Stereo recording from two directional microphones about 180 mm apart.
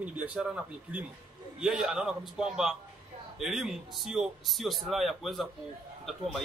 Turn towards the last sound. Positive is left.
turn(degrees=0)  # may be behind; listen again after turning